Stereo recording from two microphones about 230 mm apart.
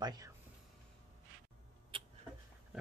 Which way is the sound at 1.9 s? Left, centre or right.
Right.